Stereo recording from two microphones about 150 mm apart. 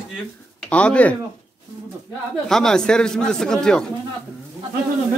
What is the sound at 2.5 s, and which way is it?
Speech, 5° left (ahead or behind).